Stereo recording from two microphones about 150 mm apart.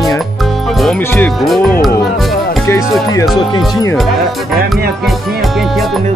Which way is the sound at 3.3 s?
30° left (ahead or behind).